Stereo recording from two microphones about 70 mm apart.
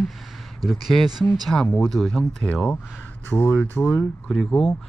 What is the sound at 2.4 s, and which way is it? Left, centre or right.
Speech, centre.